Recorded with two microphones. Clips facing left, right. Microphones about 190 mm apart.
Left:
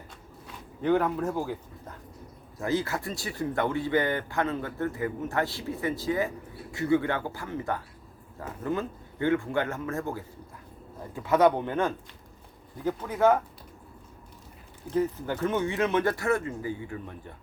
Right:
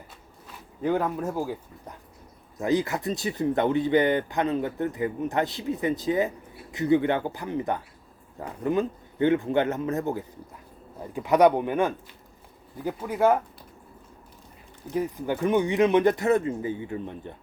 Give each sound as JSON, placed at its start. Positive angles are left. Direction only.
{"t": 0.8, "sound": "speech", "side_deg": -5}
{"t": 14.8, "sound": "speech", "side_deg": -15}